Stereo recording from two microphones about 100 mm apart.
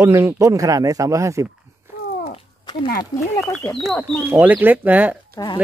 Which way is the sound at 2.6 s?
50° left (ahead or behind).